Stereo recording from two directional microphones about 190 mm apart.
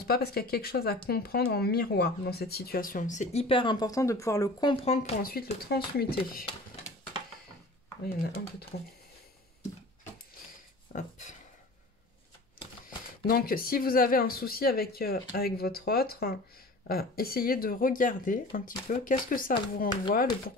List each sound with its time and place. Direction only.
0.0 s speech: 55° left (ahead or behind); by 4.7 s 20° left (ahead or behind)
4.8 s a sound: 35° left (ahead or behind)
5.2 s speech: 55° left (ahead or behind)
8.7 s speech: 55° left (ahead or behind)
10.9 s a sound: 40° left (ahead or behind)
13.3 s speech: 50° left (ahead or behind)